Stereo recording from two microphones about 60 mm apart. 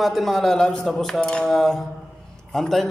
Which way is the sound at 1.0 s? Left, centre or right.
Centre.